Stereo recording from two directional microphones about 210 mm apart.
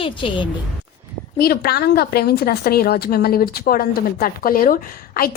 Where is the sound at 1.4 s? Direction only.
45° left (ahead or behind).